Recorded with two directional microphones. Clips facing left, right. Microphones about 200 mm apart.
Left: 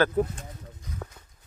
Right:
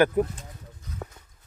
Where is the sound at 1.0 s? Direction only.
25° right (ahead or behind).